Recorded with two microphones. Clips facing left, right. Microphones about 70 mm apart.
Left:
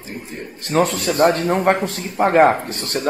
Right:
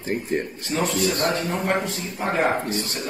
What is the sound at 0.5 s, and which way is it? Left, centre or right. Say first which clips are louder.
Speech: left 5 dB; left.